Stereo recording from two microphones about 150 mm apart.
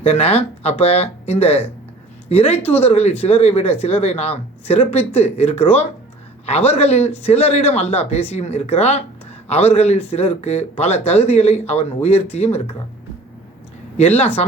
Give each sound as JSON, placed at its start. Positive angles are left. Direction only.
{"t": 0.0, "sound": "a woman's voice", "side_deg": 45}